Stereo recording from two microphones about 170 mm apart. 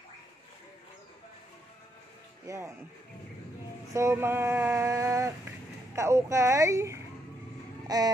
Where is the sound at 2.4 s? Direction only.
15° right (ahead or behind).